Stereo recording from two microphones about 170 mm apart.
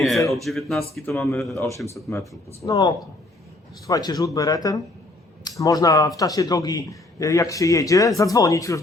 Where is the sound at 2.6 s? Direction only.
20° left (ahead or behind).